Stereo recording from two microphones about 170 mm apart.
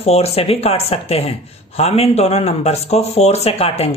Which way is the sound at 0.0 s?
35° left (ahead or behind).